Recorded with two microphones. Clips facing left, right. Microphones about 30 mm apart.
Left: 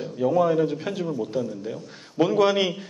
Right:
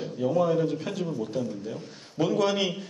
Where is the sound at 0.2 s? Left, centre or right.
Centre.